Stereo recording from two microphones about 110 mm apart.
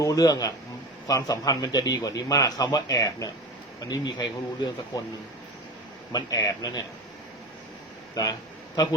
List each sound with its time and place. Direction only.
0.0 s a man's voice: 30° left (ahead or behind)
6.1 s a man's voice: 35° left (ahead or behind)
8.1 s a sound: 35° left (ahead or behind)